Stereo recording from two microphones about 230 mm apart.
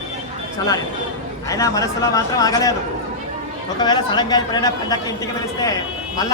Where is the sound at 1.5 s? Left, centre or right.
Centre.